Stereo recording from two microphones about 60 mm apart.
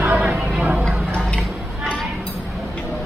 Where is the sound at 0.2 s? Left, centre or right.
Centre.